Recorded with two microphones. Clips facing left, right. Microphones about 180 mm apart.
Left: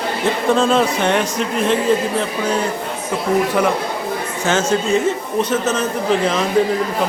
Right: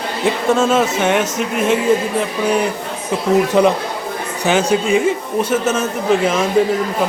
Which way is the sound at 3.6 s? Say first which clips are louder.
Right 4 dB; 20° right (ahead or behind).